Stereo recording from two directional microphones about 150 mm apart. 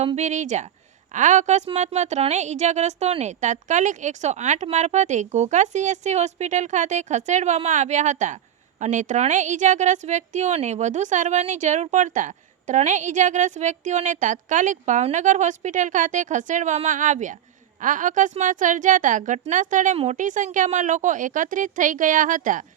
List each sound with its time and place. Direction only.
0.0 s a woman's voice: 50° right (ahead or behind)